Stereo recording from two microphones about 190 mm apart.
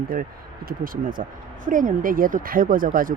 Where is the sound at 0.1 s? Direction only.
50° right (ahead or behind).